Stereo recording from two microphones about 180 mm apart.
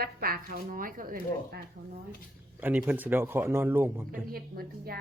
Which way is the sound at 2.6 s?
10° right (ahead or behind).